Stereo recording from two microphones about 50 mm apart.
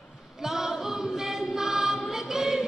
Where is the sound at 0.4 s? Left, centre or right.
Centre.